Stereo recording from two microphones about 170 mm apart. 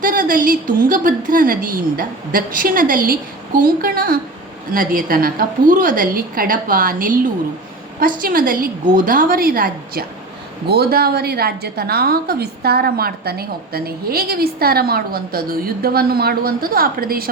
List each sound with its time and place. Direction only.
0.0 s a woman's voice: 55° right (ahead or behind)